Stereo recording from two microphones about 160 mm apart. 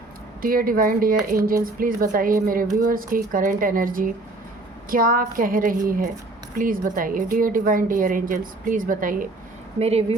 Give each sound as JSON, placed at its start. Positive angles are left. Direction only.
{"t": 0.4, "sound": "a woman's voice", "side_deg": -65}
{"t": 9.7, "sound": "a woman's voice", "side_deg": -40}